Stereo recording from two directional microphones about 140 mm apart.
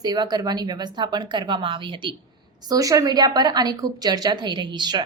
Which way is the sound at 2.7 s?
25° right (ahead or behind).